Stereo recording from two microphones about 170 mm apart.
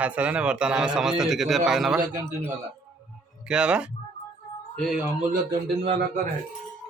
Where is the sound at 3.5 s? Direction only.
5° right (ahead or behind).